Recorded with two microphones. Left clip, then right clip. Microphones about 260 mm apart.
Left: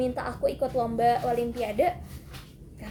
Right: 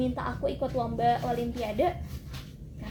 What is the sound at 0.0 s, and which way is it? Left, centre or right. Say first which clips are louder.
A woman's voice: left 3 dB; left.